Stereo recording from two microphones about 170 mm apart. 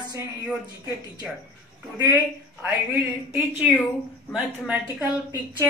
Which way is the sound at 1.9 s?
20° right (ahead or behind).